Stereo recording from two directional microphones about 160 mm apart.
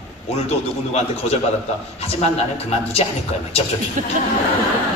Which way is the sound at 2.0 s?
40° left (ahead or behind).